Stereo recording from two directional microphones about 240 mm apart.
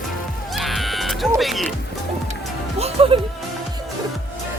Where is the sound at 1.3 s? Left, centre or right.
Centre.